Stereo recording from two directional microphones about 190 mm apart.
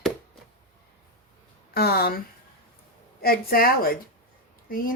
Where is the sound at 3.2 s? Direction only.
50° left (ahead or behind).